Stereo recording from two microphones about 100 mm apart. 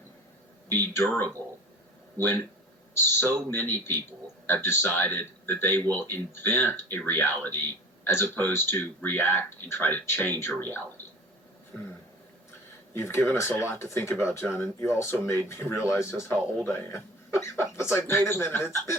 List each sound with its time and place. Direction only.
0.7 s speech: 20° left (ahead or behind)
3.5 s speech: 25° left (ahead or behind)
12.9 s speech: 25° left (ahead or behind)